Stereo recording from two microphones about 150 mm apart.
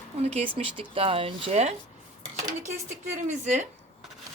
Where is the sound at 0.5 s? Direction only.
40° right (ahead or behind).